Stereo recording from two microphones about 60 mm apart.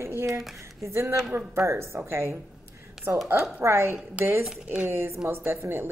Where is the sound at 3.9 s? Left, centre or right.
Right.